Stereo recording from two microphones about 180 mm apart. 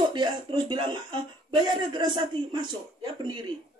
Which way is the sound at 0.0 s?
25° right (ahead or behind).